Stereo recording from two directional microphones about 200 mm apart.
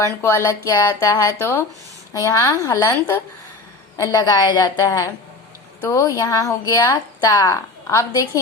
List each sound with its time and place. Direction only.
0.0 s a woman's voice: 15° left (ahead or behind)